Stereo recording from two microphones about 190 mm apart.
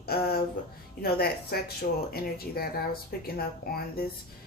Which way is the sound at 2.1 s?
50° left (ahead or behind).